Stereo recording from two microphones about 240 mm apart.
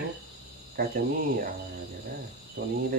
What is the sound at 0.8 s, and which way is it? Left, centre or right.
Speech, right.